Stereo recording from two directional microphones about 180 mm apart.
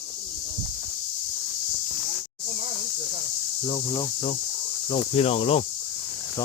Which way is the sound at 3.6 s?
25° left (ahead or behind).